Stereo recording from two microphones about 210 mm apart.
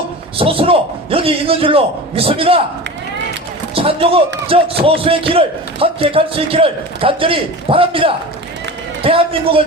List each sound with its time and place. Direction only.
0.3 s a man's voice: 25° right (ahead or behind)
3.8 s a man's voice: 25° right (ahead or behind)